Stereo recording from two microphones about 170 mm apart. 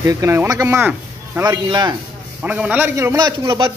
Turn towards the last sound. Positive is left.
turn(degrees=-25)  # may be behind; listen again after turning